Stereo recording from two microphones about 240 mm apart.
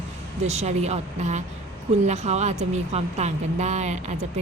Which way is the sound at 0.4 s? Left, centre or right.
Right.